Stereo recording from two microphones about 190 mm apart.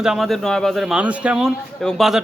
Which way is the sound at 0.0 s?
Centre (ahead or behind).